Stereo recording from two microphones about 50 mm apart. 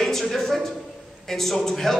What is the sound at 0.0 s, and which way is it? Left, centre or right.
A man's voice, centre.